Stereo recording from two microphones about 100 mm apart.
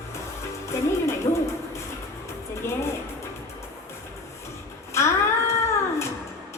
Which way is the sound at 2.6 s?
25° left (ahead or behind).